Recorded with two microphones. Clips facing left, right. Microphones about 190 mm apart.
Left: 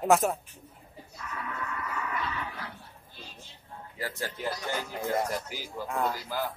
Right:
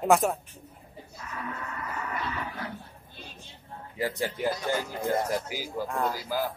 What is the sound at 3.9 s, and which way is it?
Speech, 15° right (ahead or behind).